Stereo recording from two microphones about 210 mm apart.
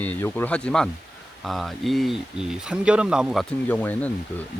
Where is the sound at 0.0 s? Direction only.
10° left (ahead or behind).